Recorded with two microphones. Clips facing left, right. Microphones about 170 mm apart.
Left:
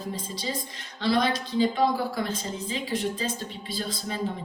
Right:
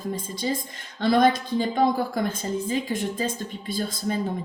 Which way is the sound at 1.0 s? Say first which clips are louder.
Right 5 dB; 50° right (ahead or behind).